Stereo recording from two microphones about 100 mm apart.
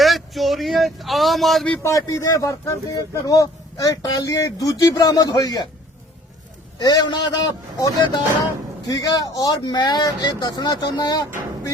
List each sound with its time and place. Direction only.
0.0 s speech: centre (ahead or behind)
1.8 s speech: 35° left (ahead or behind)
6.7 s a man's voice: 40° left (ahead or behind)